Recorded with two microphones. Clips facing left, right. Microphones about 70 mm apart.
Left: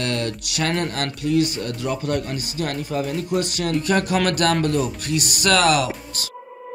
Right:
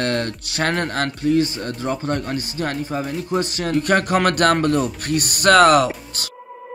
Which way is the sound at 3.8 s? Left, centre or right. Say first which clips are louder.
Right 3 dB; right.